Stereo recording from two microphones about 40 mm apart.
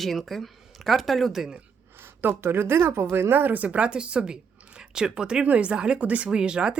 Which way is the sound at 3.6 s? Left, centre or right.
Right.